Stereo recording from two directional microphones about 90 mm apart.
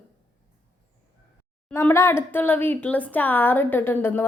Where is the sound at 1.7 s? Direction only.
25° left (ahead or behind).